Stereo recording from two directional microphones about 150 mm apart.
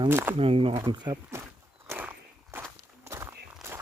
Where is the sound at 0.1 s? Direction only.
15° right (ahead or behind).